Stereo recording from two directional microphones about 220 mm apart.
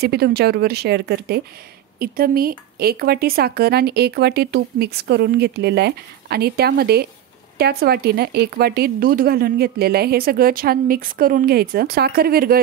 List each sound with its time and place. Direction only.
0.0 s speech: 45° right (ahead or behind)